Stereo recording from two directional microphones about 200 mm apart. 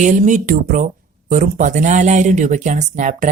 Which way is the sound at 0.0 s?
40° right (ahead or behind).